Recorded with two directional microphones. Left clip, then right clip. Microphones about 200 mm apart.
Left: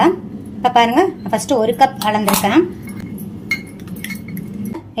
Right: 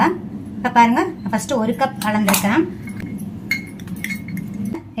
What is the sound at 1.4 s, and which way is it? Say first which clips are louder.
Speech: left 7 dB; 35° left (ahead or behind).